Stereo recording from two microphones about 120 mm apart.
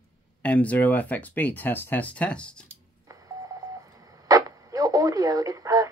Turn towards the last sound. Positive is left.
turn(degrees=-30)  # may be behind; listen again after turning